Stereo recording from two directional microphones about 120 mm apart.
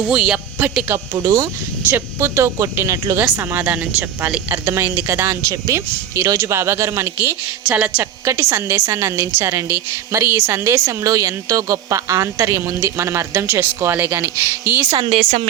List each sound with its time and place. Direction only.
0.1 s speech: 10° right (ahead or behind)
0.9 s a woman's voice: 30° right (ahead or behind); by 8.0 s 10° right (ahead or behind)
8.2 s a woman's voice: 20° right (ahead or behind)
15.1 s speech: 55° right (ahead or behind)